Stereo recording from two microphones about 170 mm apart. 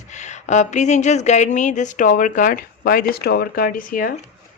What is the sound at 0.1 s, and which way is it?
Speech, 45° left (ahead or behind).